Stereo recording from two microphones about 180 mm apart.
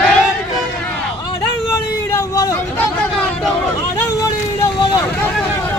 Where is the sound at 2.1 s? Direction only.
20° left (ahead or behind).